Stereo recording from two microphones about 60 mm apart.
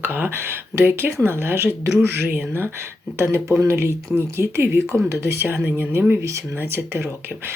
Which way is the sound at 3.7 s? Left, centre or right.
Right.